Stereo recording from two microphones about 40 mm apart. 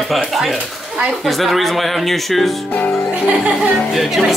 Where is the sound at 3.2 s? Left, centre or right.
Right.